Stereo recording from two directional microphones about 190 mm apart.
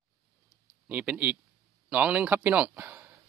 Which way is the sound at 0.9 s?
5° right (ahead or behind).